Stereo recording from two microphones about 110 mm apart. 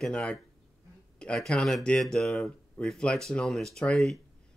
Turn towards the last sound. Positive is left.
turn(degrees=5)  # may be behind; listen again after turning